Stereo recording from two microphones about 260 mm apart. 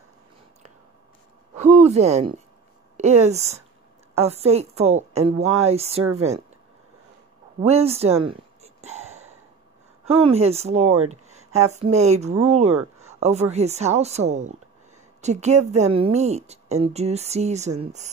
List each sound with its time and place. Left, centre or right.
1.6 s speech: right
7.6 s a sound: right
10.0 s speech: right